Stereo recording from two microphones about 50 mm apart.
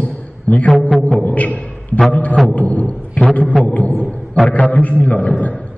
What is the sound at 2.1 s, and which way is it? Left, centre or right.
A man's voice, left.